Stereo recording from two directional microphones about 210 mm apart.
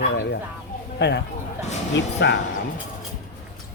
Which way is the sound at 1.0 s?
55° left (ahead or behind).